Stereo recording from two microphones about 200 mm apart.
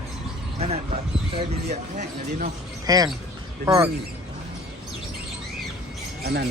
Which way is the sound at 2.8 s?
20° right (ahead or behind).